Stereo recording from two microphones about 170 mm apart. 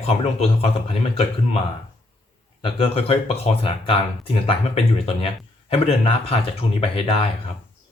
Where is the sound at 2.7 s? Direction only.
30° left (ahead or behind).